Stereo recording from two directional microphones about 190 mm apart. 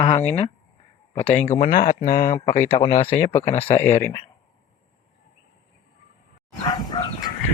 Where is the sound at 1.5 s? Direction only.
35° left (ahead or behind).